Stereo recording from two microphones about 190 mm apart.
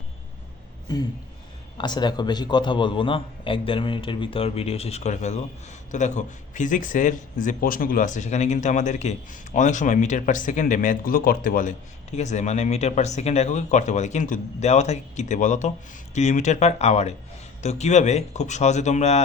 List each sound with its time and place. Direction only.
0.9 s a man's voice: 20° left (ahead or behind); by 19.2 s 35° left (ahead or behind)